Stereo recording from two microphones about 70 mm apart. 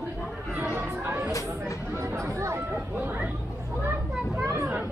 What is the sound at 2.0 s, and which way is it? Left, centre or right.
Speech, right.